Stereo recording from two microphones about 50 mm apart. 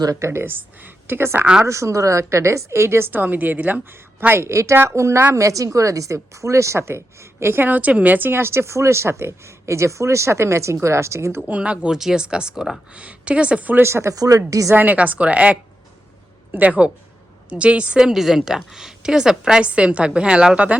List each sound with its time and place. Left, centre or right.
0.2 s a woman's voice: right
0.4 s speech: right
1.6 s a woman's voice: right
3.1 s a woman's voice: right
4.3 s a woman's voice: right
5.3 s a woman's voice: right
7.6 s a woman's voice: right
8.3 s a woman's voice: right
11.6 s a woman's voice: right
11.9 s a woman's voice: centre; by 13.8 s right
13.8 s speech: right
14.9 s a woman's voice: right
18.1 s a woman's voice: centre